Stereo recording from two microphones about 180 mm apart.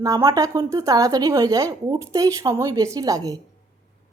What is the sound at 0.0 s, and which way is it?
Speech, 20° right (ahead or behind).